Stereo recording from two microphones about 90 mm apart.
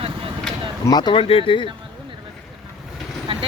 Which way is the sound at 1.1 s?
90° left.